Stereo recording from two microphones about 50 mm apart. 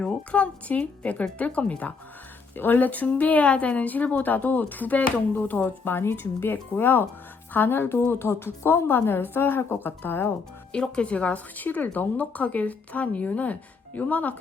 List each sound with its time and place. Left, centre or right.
0.0 s speech: left
2.6 s speech: left
5.8 s a woman's voice: left
10.7 s speech: centre